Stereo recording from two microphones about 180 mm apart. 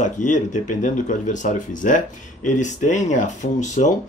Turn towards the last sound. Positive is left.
turn(degrees=40)  # may be behind; listen again after turning